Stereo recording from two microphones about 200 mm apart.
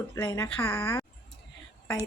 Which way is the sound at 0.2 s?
15° left (ahead or behind).